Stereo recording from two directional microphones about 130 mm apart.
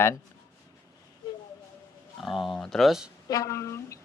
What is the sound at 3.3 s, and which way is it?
Speech, 25° left (ahead or behind).